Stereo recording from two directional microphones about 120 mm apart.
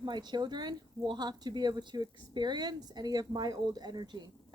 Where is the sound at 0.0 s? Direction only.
35° right (ahead or behind).